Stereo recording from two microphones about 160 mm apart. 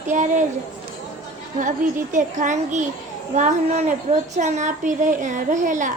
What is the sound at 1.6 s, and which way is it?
A woman's voice, 50° right (ahead or behind).